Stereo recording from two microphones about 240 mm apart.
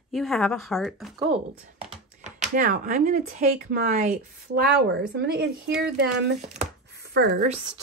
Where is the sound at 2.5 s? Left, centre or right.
Right.